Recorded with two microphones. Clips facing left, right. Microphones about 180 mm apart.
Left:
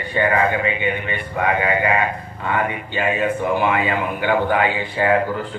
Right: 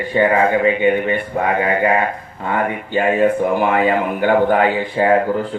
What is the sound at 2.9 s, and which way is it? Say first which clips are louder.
Speech: right 8 dB; 45° right (ahead or behind).